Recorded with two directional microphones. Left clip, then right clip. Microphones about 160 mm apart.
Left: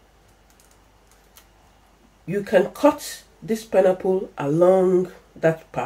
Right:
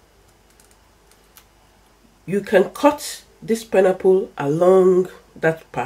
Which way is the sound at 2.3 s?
40° right (ahead or behind).